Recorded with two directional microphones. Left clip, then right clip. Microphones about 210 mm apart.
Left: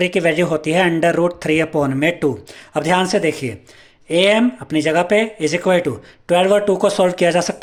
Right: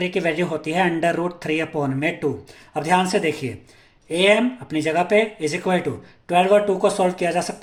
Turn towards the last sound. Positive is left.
turn(degrees=40)  # may be behind; listen again after turning